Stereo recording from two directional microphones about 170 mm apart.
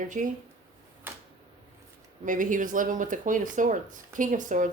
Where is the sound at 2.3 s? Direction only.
50° right (ahead or behind).